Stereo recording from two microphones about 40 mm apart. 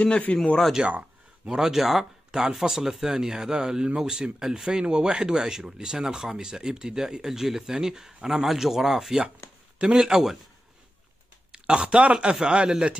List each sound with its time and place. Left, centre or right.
0.3 s speech: left
0.8 s a sound: right
1.5 s speech: centre
11.5 s a man's voice: right